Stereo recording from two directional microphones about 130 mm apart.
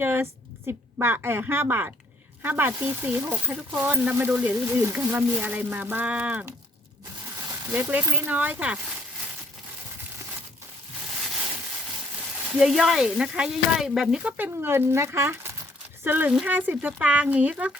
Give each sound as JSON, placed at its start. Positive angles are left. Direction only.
{"t": 0.0, "sound": "speech", "side_deg": -15}
{"t": 7.7, "sound": "speech", "side_deg": -15}
{"t": 12.5, "sound": "speech", "side_deg": -5}